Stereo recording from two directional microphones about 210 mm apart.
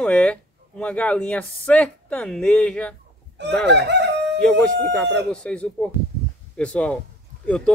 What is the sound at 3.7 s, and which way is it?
Crowing, 55° right (ahead or behind).